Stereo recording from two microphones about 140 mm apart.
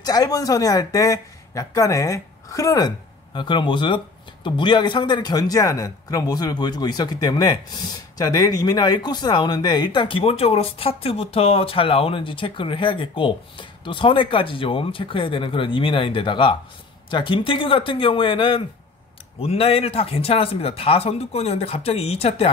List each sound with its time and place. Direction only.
0.0 s speech: 25° left (ahead or behind); by 22.5 s 45° left (ahead or behind)